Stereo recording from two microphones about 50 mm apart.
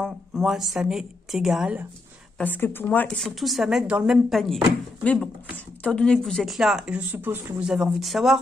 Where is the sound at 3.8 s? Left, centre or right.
Right.